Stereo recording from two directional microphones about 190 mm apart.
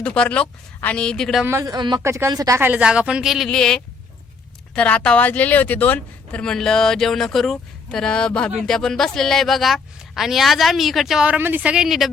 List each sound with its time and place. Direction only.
0.0 s speech: 5° left (ahead or behind)
1.5 s a man's voice: 15° right (ahead or behind)